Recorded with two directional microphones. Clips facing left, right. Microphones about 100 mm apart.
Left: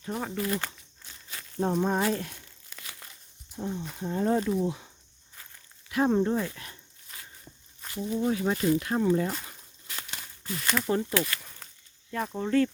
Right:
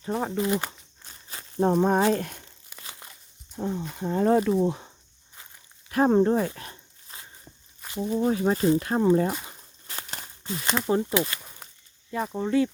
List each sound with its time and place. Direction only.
0.1 s speech: 30° right (ahead or behind)
0.7 s crumpling: 35° right (ahead or behind)
1.6 s speech: 50° right (ahead or behind)
2.6 s crumpling: 25° right (ahead or behind)
3.6 s speech: 85° right
3.9 s speech: 70° right (ahead or behind)
4.4 s speech: 55° right (ahead or behind)
5.9 s speech: 45° right (ahead or behind)
6.5 s dog: 30° right (ahead or behind)
8.0 s speech: 35° right (ahead or behind)
9.2 s speech: 20° right (ahead or behind)
9.8 s a sound: 35° right (ahead or behind)
10.4 s speech: 25° right (ahead or behind)